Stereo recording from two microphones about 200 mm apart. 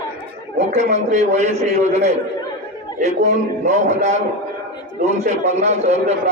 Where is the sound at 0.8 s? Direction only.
35° right (ahead or behind).